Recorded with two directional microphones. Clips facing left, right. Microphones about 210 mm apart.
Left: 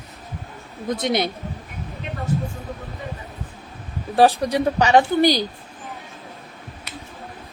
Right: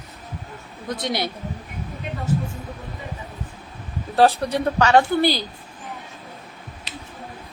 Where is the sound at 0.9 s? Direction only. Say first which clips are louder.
Left 4 dB; 20° left (ahead or behind).